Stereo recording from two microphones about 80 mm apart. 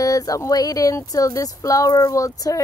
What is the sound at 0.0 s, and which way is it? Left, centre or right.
Speech, left.